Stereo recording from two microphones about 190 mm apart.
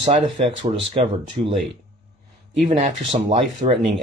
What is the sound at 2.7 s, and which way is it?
Speech, 35° right (ahead or behind).